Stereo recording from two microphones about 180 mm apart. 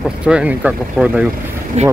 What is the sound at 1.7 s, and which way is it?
Speech, 40° right (ahead or behind).